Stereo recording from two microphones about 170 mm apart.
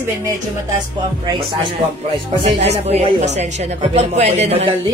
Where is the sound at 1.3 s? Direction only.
30° right (ahead or behind).